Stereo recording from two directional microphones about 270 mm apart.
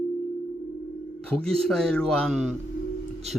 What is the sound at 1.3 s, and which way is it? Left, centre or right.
A man's voice, centre.